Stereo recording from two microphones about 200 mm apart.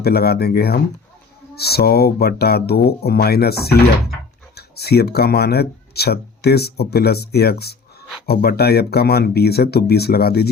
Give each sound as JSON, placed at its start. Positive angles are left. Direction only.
{"t": 0.0, "sound": "speech", "side_deg": 50}